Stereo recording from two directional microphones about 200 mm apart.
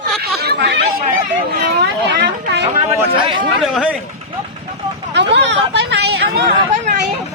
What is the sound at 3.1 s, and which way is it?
Speech, 25° right (ahead or behind).